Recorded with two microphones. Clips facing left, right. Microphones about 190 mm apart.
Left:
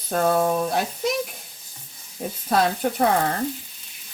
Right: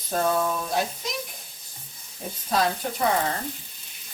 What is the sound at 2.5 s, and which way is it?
Speech, 55° left (ahead or behind).